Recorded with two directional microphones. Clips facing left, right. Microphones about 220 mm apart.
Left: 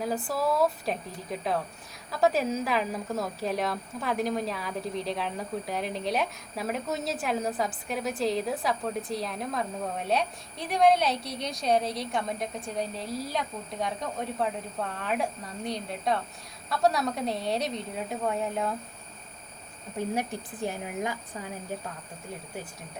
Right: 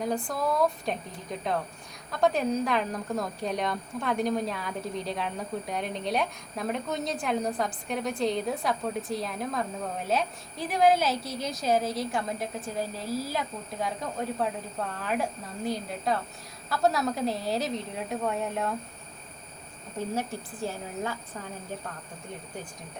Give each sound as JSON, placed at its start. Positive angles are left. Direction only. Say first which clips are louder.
{"t": 0.3, "sound": "a woman's voice", "louder": "left 3 dB", "side_deg": 5}
{"t": 20.1, "sound": "a woman's voice", "louder": "left 1 dB", "side_deg": 15}